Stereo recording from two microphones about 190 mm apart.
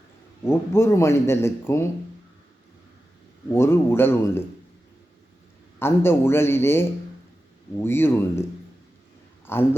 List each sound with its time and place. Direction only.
0.4 s a man's voice: 15° left (ahead or behind)
3.5 s a man's voice: 15° left (ahead or behind)
5.8 s a man's voice: 10° left (ahead or behind)
9.5 s a man's voice: 10° left (ahead or behind)